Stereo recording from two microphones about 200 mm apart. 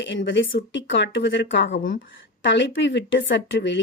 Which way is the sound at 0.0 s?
65° left (ahead or behind).